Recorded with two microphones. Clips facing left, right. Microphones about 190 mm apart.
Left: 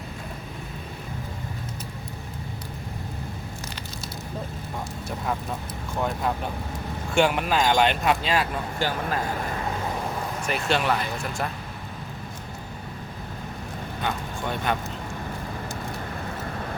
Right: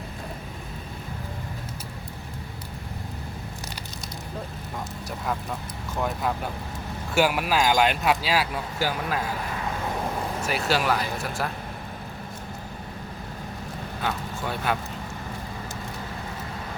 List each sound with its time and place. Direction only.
7.1 s speech: 5° right (ahead or behind)
10.4 s speech: 5° right (ahead or behind)
14.0 s a sound: 5° right (ahead or behind)